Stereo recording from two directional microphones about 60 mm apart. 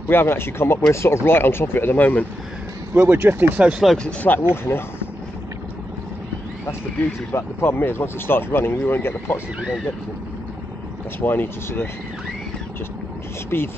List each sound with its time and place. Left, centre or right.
0.1 s speech: left
2.9 s speech: right
4.2 s speech: left
7.3 s speech: left
11.1 s speech: left
13.5 s speech: left